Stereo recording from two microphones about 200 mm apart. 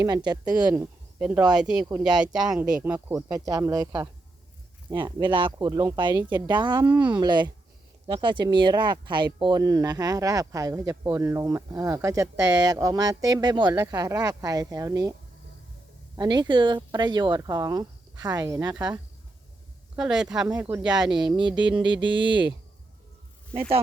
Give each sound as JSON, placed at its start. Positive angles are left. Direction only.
{"t": 0.0, "sound": "speech", "side_deg": -20}
{"t": 1.2, "sound": "speech", "side_deg": -5}
{"t": 16.1, "sound": "speech", "side_deg": -20}
{"t": 20.0, "sound": "speech", "side_deg": -5}
{"t": 20.5, "sound": "speech", "side_deg": -15}
{"t": 23.6, "sound": "speech", "side_deg": -30}